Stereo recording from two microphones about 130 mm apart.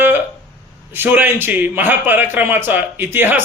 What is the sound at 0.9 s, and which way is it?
A man's voice, 15° right (ahead or behind).